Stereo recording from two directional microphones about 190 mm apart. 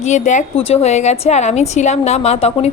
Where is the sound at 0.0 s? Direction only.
40° left (ahead or behind).